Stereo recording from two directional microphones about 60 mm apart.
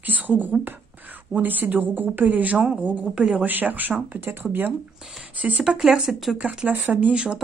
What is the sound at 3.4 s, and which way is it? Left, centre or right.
Speech, right.